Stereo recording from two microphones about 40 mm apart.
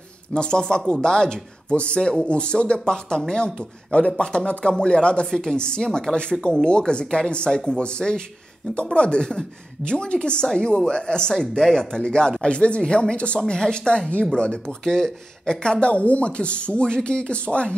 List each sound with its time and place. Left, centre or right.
0.3 s speech: left
5.3 s a woman's voice: centre; by 13.4 s left
13.4 s speech: centre